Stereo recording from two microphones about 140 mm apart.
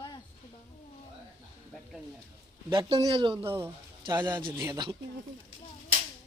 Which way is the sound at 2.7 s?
40° right (ahead or behind).